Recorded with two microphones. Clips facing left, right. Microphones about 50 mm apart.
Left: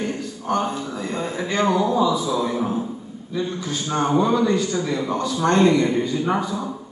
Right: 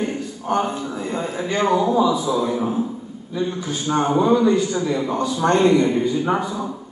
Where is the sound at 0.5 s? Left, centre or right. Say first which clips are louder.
Right 1 dB; right.